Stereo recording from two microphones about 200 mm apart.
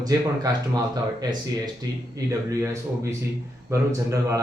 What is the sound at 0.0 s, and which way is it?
A man's voice, 20° right (ahead or behind).